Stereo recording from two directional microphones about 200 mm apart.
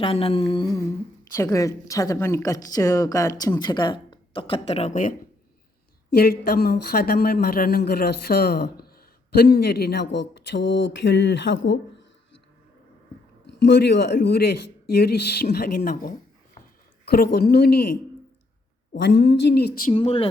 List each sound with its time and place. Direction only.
0.0 s humming: 30° left (ahead or behind)
1.4 s a woman's voice: 15° left (ahead or behind); by 5.1 s 40° left (ahead or behind)
6.1 s speech: 50° left (ahead or behind); by 11.8 s 65° left (ahead or behind)
13.5 s speech: 55° left (ahead or behind)
18.9 s speech: 55° left (ahead or behind)
19.9 s humming: 25° left (ahead or behind)